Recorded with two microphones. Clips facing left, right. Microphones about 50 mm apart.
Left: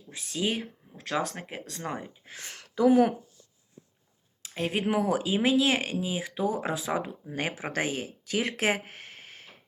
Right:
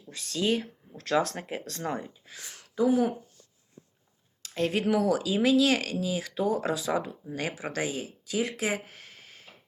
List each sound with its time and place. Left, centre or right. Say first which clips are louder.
0.1 s speech: right 3 dB; centre
2.2 s speech: left 3 dB; left
4.4 s speech: right 2 dB; centre
6.7 s speech: right 1 dB; left
7.3 s speech: left 1 dB; left